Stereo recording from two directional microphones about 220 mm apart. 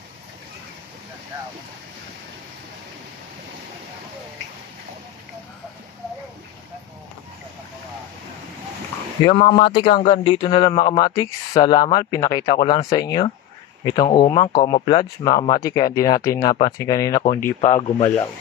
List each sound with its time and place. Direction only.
9.2 s speech: 30° left (ahead or behind)